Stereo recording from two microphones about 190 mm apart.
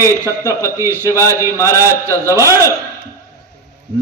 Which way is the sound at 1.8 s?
15° right (ahead or behind).